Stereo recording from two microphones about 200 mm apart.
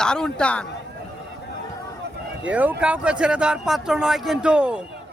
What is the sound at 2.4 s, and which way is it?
A man's voice, 5° right (ahead or behind).